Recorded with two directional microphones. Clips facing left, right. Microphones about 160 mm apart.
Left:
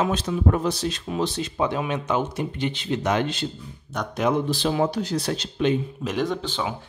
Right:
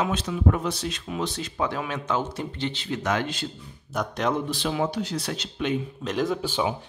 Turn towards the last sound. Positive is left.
turn(degrees=-10)  # may be behind; listen again after turning